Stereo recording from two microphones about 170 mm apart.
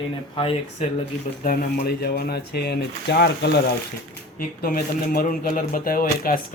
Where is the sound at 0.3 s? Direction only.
35° left (ahead or behind).